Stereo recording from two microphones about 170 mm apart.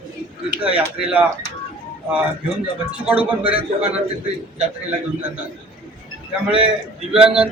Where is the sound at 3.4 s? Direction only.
35° right (ahead or behind).